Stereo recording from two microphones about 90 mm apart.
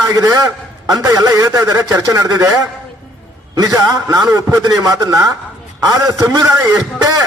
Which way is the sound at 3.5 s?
40° right (ahead or behind).